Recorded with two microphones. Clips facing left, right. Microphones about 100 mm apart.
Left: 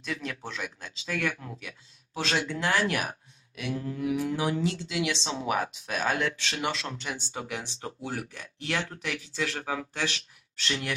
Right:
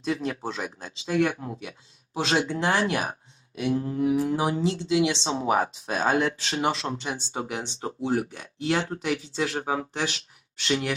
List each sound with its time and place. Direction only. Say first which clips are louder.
0.0 s speech: right 7 dB; 30° right (ahead or behind)